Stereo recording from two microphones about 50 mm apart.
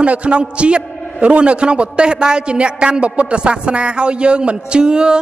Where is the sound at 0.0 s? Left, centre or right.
Right.